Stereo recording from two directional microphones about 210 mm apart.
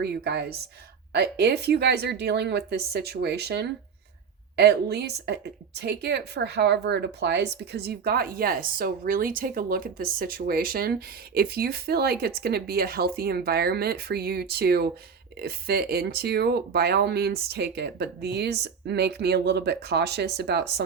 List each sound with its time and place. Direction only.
0.0 s a woman's voice: 50° right (ahead or behind)